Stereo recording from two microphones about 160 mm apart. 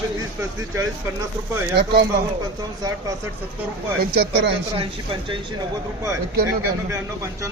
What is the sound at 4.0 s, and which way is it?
Speech, 85° right.